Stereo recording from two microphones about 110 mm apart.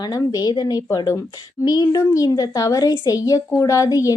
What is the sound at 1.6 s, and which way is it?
Speech, 40° left (ahead or behind).